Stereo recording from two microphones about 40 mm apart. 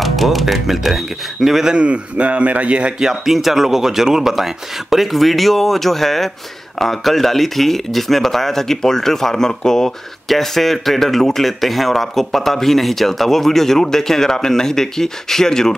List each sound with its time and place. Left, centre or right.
0.0 s speech: centre
1.7 s a man's voice: right
3.0 s a man's voice: centre